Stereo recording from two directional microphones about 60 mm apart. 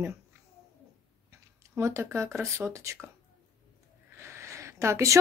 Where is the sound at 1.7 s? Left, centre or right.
Right.